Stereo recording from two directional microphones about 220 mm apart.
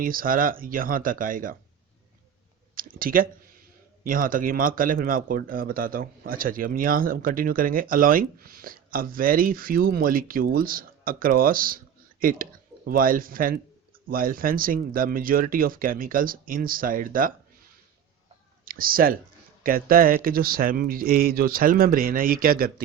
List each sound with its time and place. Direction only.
0.0 s speech: 40° right (ahead or behind)
2.7 s a sound: 40° right (ahead or behind)
4.0 s speech: 40° right (ahead or behind)
18.6 s speech: 40° right (ahead or behind)